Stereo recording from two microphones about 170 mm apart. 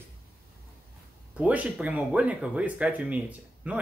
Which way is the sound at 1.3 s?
10° right (ahead or behind).